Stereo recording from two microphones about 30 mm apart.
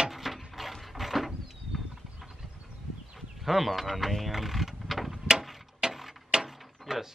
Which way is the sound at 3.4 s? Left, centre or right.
Centre.